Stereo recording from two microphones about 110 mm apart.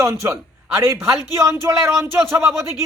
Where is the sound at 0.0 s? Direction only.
25° right (ahead or behind).